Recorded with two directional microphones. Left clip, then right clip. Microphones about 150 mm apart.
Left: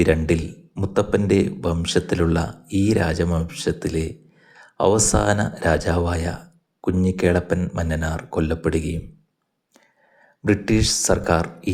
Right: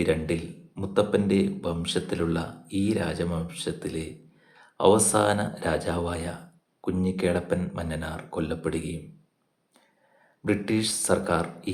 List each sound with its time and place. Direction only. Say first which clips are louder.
0.0 s a man's voice: left 7 dB; 50° left (ahead or behind)
10.4 s a man's voice: left 6 dB; 45° left (ahead or behind)